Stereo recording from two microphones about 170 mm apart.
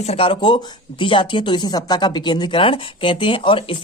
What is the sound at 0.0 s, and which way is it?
Speech, 35° left (ahead or behind).